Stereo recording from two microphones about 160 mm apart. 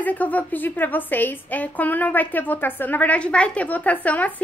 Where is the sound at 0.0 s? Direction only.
10° left (ahead or behind).